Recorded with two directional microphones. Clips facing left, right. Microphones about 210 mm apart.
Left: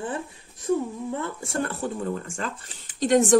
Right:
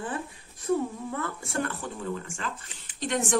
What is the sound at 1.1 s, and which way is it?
Speech, 25° left (ahead or behind).